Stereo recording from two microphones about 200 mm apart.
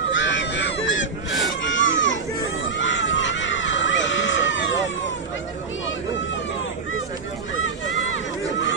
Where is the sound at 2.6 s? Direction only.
65° left (ahead or behind).